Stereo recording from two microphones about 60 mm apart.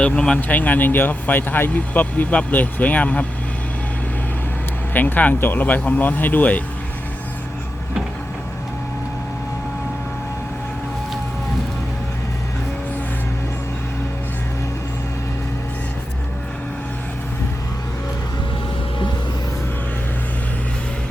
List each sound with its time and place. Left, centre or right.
0.3 s speech: left
4.9 s speech: left